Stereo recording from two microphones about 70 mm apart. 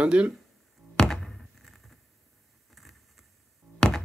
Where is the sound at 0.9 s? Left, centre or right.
Centre.